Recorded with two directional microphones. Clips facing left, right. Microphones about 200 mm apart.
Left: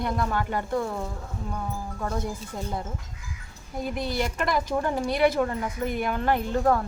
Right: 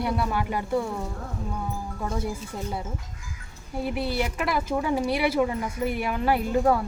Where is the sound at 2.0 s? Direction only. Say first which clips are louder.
Even; 10° right (ahead or behind).